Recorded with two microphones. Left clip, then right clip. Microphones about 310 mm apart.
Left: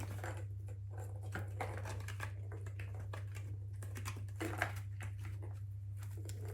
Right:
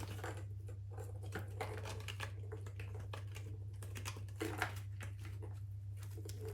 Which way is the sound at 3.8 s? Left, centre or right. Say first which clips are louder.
Even; centre.